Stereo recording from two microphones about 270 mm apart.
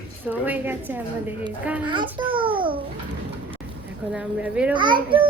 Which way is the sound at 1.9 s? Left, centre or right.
Centre.